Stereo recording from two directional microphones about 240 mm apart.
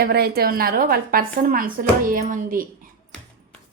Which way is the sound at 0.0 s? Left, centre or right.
Right.